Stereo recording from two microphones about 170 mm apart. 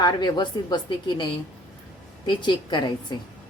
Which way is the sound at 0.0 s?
25° left (ahead or behind).